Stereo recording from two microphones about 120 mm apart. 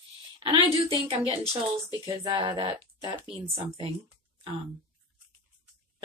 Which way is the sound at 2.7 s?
35° right (ahead or behind).